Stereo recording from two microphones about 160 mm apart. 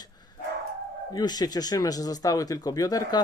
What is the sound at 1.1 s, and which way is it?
Speech, 25° left (ahead or behind).